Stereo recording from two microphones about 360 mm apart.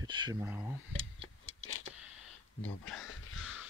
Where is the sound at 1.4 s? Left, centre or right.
Left.